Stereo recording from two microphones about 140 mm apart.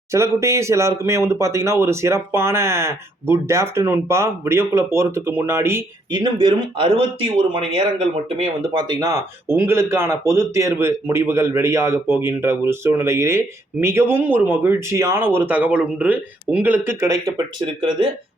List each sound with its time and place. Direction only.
0.1 s speech: 20° right (ahead or behind)
6.1 s speech: 35° right (ahead or behind)
8.9 s speech: 25° right (ahead or behind)
17.7 s speech: 35° right (ahead or behind)